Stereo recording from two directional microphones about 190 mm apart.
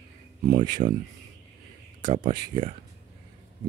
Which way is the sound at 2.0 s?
25° right (ahead or behind).